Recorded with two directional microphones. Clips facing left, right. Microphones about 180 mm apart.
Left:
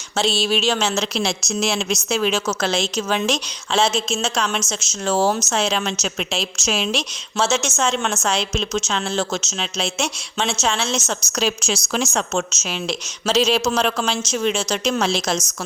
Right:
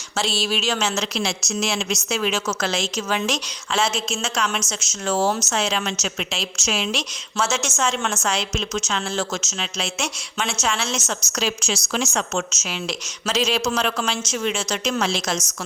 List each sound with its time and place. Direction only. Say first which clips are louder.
0.2 s a woman's voice: left 4 dB; 20° left (ahead or behind)
11.3 s a woman's voice: left 3 dB; 40° left (ahead or behind)
12.0 s a woman's voice: left 2 dB; 30° left (ahead or behind)